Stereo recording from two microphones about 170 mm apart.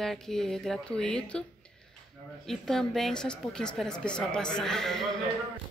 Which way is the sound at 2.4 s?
Centre (ahead or behind).